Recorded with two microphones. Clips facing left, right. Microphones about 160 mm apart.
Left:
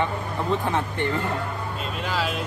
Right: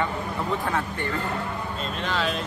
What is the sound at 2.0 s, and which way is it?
Speech, 5° left (ahead or behind).